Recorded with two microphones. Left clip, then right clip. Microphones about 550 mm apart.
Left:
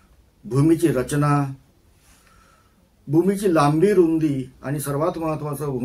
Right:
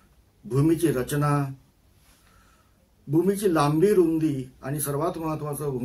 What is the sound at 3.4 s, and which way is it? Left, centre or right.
A man's voice, right.